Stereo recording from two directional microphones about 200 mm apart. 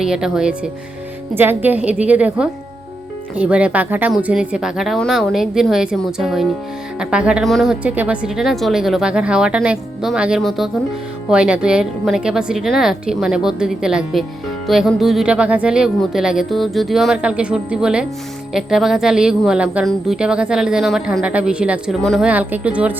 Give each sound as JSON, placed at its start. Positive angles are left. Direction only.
{"t": 0.0, "sound": "a woman's voice", "side_deg": -5}